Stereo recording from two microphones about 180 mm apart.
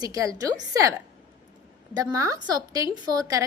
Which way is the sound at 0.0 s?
20° right (ahead or behind).